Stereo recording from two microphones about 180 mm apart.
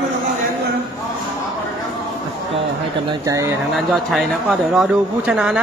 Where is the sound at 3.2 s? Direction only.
15° right (ahead or behind).